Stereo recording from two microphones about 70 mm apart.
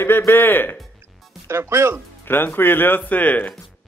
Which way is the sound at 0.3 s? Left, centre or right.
Left.